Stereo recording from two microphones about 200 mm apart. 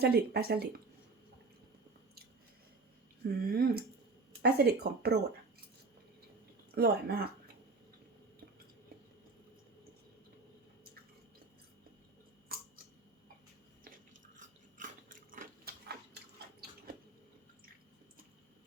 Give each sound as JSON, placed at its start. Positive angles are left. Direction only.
{"t": 0.0, "sound": "speech", "side_deg": -50}
{"t": 3.2, "sound": "speech", "side_deg": -45}
{"t": 6.7, "sound": "speech", "side_deg": -50}
{"t": 12.5, "sound": "a sound", "side_deg": -45}
{"t": 13.8, "sound": "biting", "side_deg": -40}